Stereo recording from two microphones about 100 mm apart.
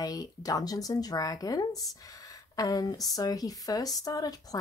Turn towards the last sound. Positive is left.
turn(degrees=40)  # may be behind; listen again after turning